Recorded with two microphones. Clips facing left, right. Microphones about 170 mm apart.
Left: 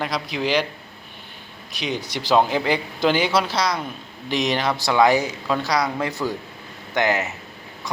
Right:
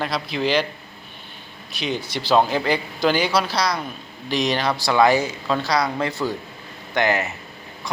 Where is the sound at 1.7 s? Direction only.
15° left (ahead or behind).